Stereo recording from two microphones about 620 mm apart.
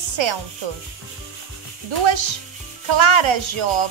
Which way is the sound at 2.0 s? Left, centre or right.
Right.